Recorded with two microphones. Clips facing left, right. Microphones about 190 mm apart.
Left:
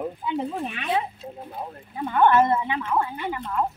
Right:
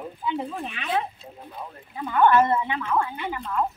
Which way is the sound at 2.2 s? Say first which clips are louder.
Even; 20° left (ahead or behind).